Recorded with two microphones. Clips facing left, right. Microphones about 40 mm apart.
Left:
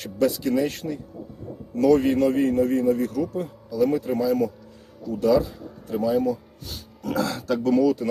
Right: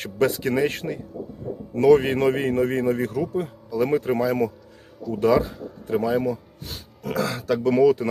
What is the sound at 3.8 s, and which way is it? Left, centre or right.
Speech, right.